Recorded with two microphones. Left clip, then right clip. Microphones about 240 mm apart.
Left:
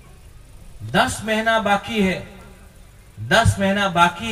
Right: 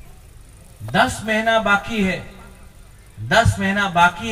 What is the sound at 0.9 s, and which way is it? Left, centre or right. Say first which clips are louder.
A man's voice: right 1 dB; left.